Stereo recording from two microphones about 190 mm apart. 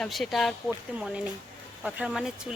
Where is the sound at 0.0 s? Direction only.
Centre (ahead or behind).